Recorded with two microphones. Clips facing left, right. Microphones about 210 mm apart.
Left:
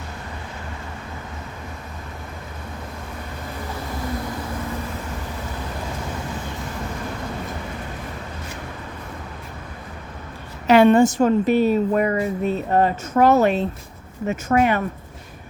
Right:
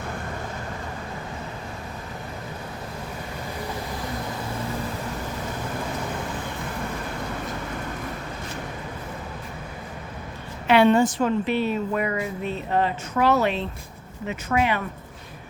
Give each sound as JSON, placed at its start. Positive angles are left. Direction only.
{"t": 10.7, "sound": "a woman's voice", "side_deg": 50}